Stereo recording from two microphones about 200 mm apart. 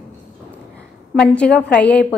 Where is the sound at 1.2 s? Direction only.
5° left (ahead or behind).